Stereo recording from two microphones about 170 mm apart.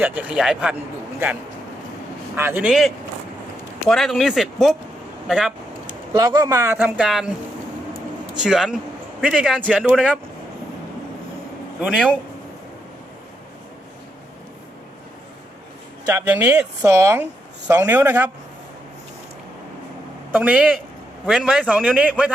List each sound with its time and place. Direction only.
0.0 s speech: 10° right (ahead or behind)
2.3 s speech: 15° right (ahead or behind)
6.1 s speech: 20° right (ahead or behind); by 7.3 s 5° right (ahead or behind)
8.4 s speech: 5° right (ahead or behind)
16.0 s speech: 10° right (ahead or behind)
20.3 s speech: 5° right (ahead or behind)